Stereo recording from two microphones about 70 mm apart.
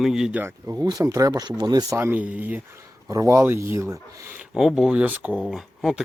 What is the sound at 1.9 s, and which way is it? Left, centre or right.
Speech, right.